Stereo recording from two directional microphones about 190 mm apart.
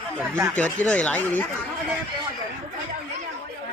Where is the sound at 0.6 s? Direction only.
5° left (ahead or behind).